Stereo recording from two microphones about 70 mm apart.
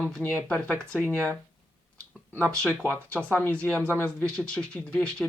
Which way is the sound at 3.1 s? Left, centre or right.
Left.